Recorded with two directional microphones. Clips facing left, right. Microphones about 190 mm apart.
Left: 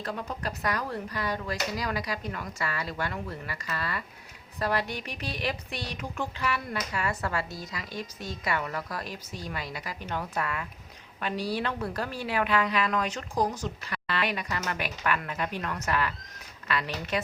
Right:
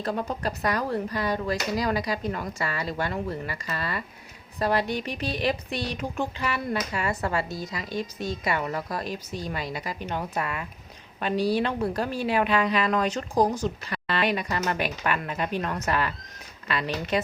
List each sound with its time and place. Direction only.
0.0 s a woman's voice: 35° right (ahead or behind)